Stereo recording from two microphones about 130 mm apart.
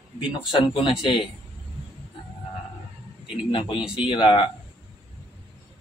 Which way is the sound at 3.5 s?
40° left (ahead or behind).